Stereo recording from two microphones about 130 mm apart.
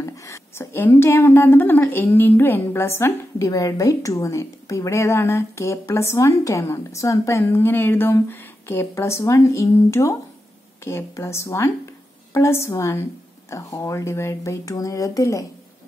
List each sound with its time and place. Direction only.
0.0 s speech: 20° left (ahead or behind)